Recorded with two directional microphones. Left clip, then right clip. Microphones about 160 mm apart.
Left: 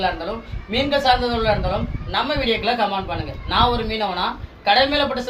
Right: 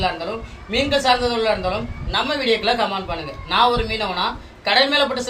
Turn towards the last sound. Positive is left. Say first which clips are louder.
# right 1 dB
turn(degrees=-20)  # may be behind; listen again after turning